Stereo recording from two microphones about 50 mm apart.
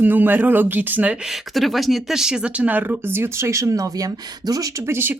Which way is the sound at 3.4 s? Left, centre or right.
Right.